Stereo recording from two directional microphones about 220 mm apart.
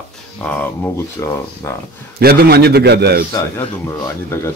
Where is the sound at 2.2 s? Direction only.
45° right (ahead or behind).